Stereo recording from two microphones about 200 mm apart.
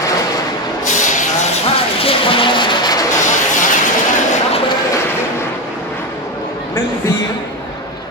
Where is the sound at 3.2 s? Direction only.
40° left (ahead or behind).